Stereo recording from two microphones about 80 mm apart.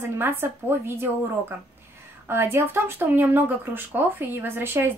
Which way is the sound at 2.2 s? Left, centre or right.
Right.